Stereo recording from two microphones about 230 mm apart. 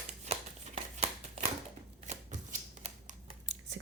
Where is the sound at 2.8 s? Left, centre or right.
Right.